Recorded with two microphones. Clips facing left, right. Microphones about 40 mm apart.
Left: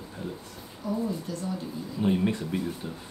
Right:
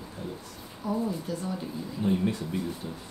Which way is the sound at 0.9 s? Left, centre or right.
Centre.